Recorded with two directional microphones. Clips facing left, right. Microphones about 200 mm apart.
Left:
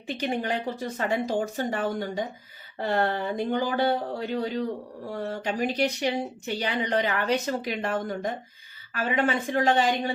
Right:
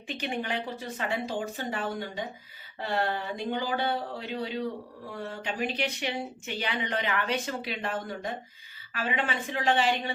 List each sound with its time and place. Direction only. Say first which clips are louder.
0.2 s speech: left 4 dB; 40° left (ahead or behind)